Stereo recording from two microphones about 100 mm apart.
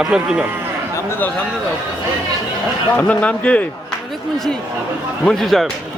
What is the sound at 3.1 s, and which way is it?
Speech, 15° left (ahead or behind).